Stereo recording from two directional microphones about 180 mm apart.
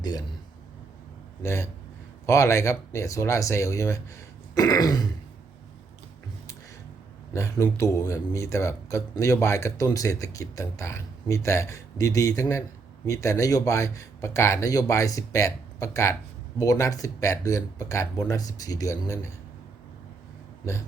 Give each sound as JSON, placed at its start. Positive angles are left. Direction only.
{"t": 0.0, "sound": "speech", "side_deg": 20}
{"t": 1.4, "sound": "speech", "side_deg": 15}
{"t": 7.3, "sound": "speech", "side_deg": 15}